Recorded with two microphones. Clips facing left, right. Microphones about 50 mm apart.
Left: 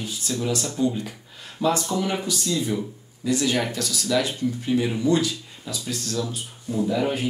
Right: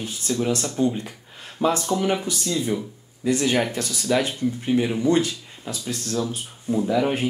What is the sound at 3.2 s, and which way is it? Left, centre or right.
Speech, right.